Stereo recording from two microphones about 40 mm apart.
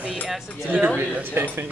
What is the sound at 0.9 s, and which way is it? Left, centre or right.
Speech, right.